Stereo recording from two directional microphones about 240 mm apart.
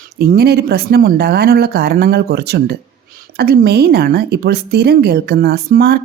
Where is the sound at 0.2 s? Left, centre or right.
Right.